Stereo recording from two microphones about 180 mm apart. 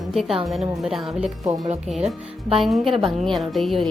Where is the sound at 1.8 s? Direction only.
Centre (ahead or behind).